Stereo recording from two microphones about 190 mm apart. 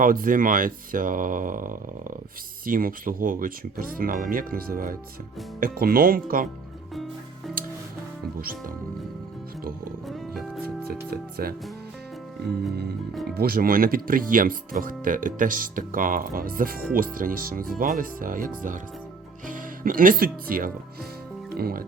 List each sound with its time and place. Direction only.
0.0 s speech: 45° right (ahead or behind)
6.9 s music: centre (ahead or behind)
10.1 s music: centre (ahead or behind)
11.1 s speech: 50° right (ahead or behind)
13.3 s speech: 50° right (ahead or behind)